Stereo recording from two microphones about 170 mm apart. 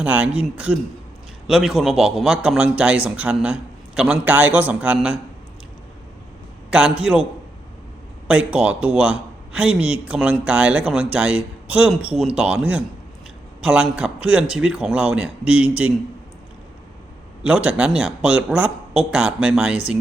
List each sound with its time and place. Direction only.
0.0 s a man's voice: 10° right (ahead or behind)
6.7 s a man's voice: 5° right (ahead or behind)
8.3 s a man's voice: 5° right (ahead or behind)
17.4 s a man's voice: 5° right (ahead or behind)